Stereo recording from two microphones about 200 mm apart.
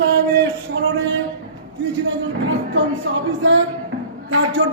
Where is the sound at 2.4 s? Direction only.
70° right (ahead or behind).